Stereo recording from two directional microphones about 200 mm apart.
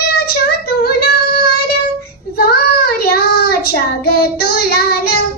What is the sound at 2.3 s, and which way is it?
Child singing, 50° left (ahead or behind).